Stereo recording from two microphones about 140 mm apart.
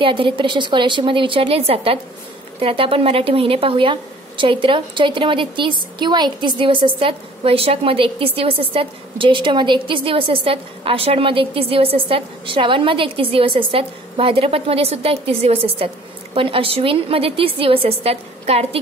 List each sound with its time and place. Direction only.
0.0 s a woman's voice: 35° right (ahead or behind)